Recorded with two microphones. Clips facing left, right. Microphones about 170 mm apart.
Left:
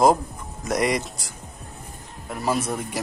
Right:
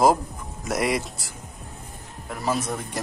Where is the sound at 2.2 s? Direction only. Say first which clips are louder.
Left 2 dB; centre (ahead or behind).